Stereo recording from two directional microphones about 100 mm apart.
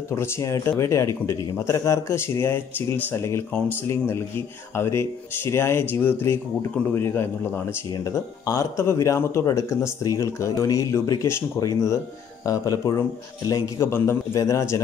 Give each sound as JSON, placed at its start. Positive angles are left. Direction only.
{"t": 0.1, "sound": "speech", "side_deg": 30}
{"t": 7.9, "sound": "speech", "side_deg": 35}
{"t": 13.7, "sound": "speech", "side_deg": 25}